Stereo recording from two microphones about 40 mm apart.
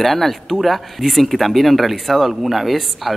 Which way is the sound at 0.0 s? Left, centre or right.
Centre.